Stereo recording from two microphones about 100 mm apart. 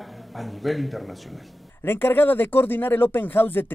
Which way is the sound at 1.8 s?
20° left (ahead or behind).